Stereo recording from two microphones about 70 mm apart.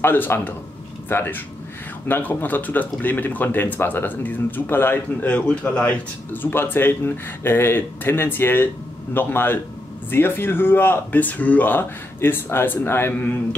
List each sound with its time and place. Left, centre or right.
0.0 s speech: left
6.3 s speech: left